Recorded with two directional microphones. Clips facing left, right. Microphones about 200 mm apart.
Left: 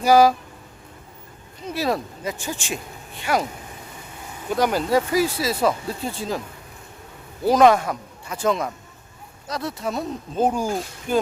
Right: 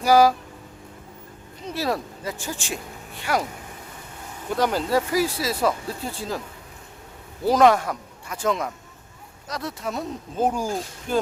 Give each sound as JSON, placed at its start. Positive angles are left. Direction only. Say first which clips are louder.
{"t": 0.0, "sound": "speech", "louder": "left 2 dB", "side_deg": 20}
{"t": 1.7, "sound": "speech", "louder": "left 2 dB", "side_deg": 15}
{"t": 4.5, "sound": "speech", "louder": "left 2 dB", "side_deg": 15}
{"t": 7.4, "sound": "speech", "louder": "left 2 dB", "side_deg": 20}